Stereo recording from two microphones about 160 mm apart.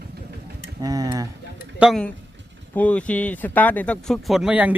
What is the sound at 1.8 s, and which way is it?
Speech, 5° right (ahead or behind).